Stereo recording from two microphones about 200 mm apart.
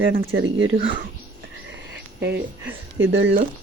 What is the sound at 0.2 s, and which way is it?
Speech, 85° right.